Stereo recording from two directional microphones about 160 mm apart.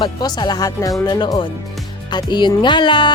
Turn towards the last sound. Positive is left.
turn(degrees=30)  # may be behind; listen again after turning